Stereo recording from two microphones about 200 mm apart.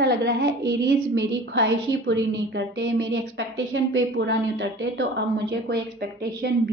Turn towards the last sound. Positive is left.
turn(degrees=-55)  # may be behind; listen again after turning